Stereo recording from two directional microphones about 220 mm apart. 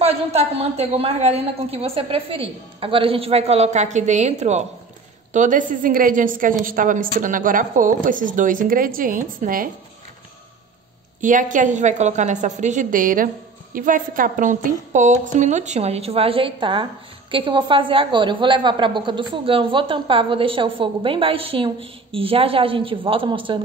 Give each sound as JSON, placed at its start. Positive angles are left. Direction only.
{"t": 0.0, "sound": "a woman's voice", "side_deg": -30}
{"t": 11.1, "sound": "a woman's voice", "side_deg": -35}